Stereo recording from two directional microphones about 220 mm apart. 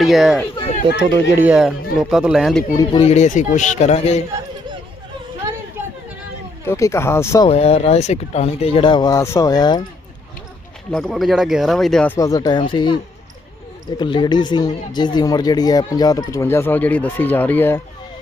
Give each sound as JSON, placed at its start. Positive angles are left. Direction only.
{"t": 0.0, "sound": "speech", "side_deg": 0}
{"t": 0.5, "sound": "speech", "side_deg": 25}
{"t": 1.4, "sound": "speech", "side_deg": -5}
{"t": 2.7, "sound": "speech", "side_deg": 25}
{"t": 5.8, "sound": "chatter", "side_deg": -10}
{"t": 6.7, "sound": "speech", "side_deg": 15}
{"t": 7.4, "sound": "speech", "side_deg": 30}
{"t": 10.9, "sound": "speech", "side_deg": 0}
{"t": 14.0, "sound": "speech", "side_deg": 20}